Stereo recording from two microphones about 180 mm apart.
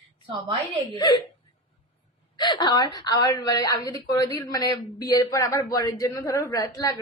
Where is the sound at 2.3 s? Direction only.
25° left (ahead or behind).